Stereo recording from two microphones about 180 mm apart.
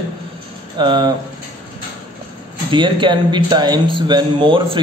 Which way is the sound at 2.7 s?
25° right (ahead or behind).